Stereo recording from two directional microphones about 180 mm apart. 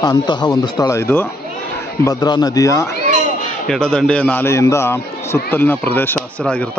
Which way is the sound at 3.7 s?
5° left (ahead or behind).